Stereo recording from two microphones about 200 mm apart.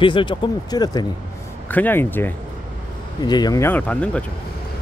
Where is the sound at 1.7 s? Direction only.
10° left (ahead or behind).